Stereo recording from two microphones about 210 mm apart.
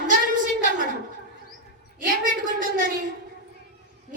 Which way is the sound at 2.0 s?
40° right (ahead or behind).